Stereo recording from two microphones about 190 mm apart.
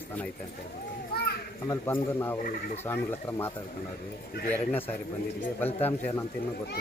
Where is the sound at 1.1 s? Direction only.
55° left (ahead or behind).